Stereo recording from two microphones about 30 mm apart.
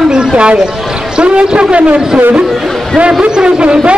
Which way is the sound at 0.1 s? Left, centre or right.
Right.